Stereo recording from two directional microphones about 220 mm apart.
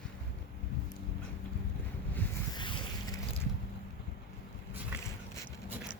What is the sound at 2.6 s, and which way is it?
Boat, 20° left (ahead or behind).